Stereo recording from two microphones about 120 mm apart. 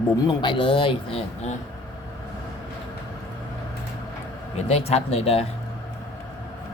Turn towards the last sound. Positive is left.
turn(degrees=60)  # may be behind; listen again after turning